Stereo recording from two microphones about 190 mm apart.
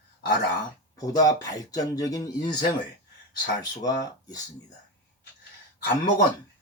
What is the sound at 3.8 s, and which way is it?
Speech, 20° left (ahead or behind).